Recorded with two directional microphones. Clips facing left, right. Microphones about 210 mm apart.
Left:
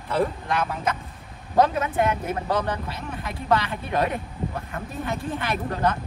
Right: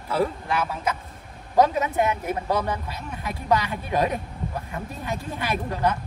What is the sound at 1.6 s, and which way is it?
A man's voice, 20° right (ahead or behind).